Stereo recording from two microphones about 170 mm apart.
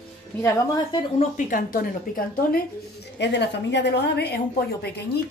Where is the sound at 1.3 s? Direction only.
55° left (ahead or behind).